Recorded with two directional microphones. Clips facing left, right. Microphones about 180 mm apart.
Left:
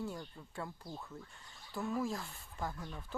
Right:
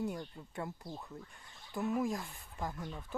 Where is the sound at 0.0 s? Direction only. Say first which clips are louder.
Right 4 dB; 20° right (ahead or behind).